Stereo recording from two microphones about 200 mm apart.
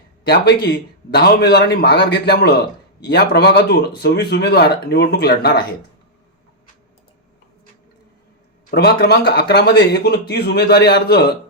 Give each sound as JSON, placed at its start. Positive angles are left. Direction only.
{"t": 0.6, "sound": "speech", "side_deg": 55}
{"t": 8.7, "sound": "speech", "side_deg": 55}